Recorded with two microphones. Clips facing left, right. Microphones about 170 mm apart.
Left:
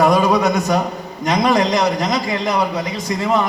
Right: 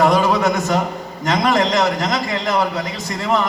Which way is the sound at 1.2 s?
20° left (ahead or behind).